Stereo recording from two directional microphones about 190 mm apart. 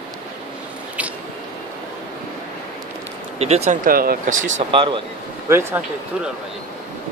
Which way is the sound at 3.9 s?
50° right (ahead or behind).